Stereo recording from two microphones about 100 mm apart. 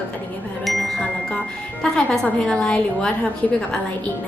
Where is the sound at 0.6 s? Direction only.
Centre (ahead or behind).